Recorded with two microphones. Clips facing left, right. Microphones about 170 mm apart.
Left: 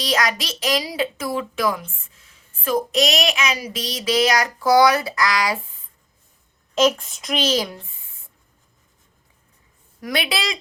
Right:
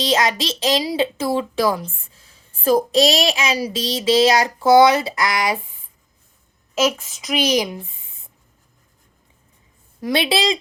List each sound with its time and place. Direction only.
0.0 s speech: 25° right (ahead or behind)
6.7 s a woman's voice: 5° right (ahead or behind)
7.4 s speech: 15° right (ahead or behind)
10.0 s speech: 25° right (ahead or behind)